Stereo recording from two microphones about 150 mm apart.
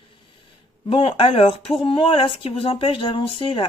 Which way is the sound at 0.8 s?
40° left (ahead or behind).